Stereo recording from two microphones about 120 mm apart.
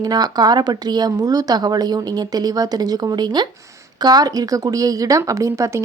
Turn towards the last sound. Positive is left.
turn(degrees=-25)  # may be behind; listen again after turning